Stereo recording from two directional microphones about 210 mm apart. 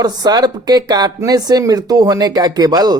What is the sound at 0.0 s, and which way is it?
Speech, 20° right (ahead or behind).